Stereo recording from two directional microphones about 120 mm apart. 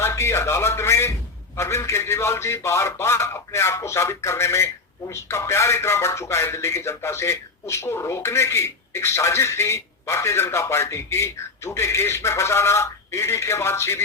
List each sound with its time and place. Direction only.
0.0 s a man's voice: 25° left (ahead or behind)